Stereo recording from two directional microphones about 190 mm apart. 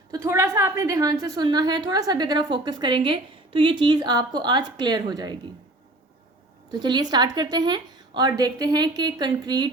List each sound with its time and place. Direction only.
0.1 s a woman's voice: 15° right (ahead or behind)
6.7 s a woman's voice: 20° right (ahead or behind)